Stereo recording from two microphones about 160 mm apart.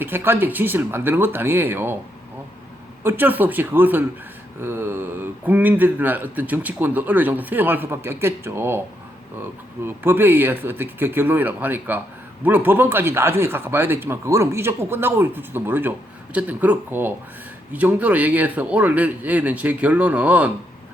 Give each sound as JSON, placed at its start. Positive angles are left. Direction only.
{"t": 0.0, "sound": "speech", "side_deg": -15}
{"t": 3.0, "sound": "speech", "side_deg": -15}
{"t": 9.8, "sound": "speech", "side_deg": -15}